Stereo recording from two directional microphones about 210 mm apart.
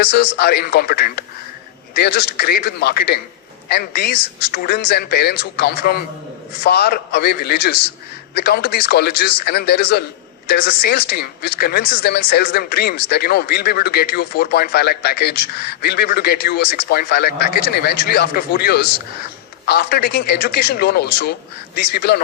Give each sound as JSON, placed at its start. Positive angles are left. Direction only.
{"t": 0.0, "sound": "a woman's voice", "side_deg": 50}